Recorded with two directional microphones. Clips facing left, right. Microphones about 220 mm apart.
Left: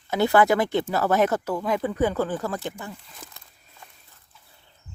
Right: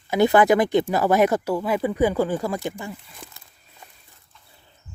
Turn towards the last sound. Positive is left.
turn(degrees=0)  # may be behind; listen again after turning